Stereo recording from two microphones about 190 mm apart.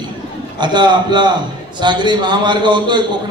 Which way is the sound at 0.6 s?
25° right (ahead or behind).